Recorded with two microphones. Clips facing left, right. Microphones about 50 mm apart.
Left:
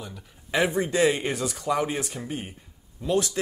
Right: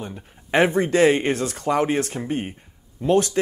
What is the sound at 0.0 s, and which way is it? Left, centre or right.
Speech, right.